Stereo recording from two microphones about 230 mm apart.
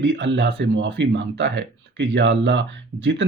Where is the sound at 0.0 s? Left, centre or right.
Right.